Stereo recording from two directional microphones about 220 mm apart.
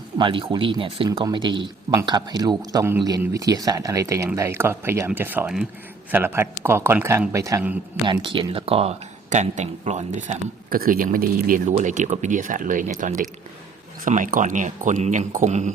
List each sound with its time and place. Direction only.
0.2 s speech: 25° right (ahead or behind)
8.0 s speech: 20° right (ahead or behind)